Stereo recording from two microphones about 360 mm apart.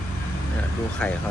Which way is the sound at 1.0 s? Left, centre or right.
Centre.